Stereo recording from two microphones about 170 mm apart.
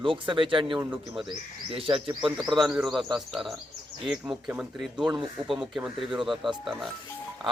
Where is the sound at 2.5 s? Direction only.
Centre (ahead or behind).